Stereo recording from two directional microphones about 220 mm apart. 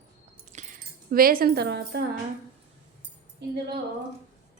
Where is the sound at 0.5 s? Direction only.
35° right (ahead or behind).